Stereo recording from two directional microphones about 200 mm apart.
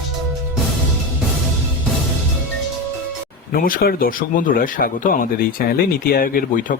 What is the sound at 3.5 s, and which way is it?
Speech, 45° left (ahead or behind).